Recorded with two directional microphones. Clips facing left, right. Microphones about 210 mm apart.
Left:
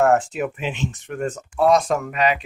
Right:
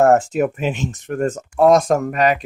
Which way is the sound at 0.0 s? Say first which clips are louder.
Right 4 dB; 45° right (ahead or behind).